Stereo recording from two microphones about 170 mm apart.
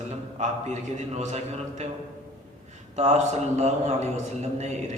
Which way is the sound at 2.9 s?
40° right (ahead or behind).